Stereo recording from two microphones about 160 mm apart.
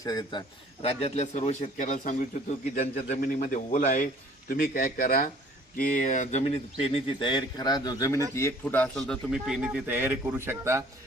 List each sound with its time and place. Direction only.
0.0 s a man's voice: 25° left (ahead or behind)
0.9 s a man's voice: 45° left (ahead or behind)
2.7 s a man's voice: 40° left (ahead or behind)
3.2 s a man's voice: 60° left (ahead or behind); by 10.8 s 15° right (ahead or behind)